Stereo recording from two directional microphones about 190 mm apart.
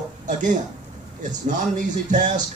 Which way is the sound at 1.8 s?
40° right (ahead or behind).